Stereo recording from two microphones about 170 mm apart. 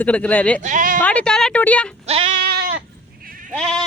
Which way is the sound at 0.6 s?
50° right (ahead or behind).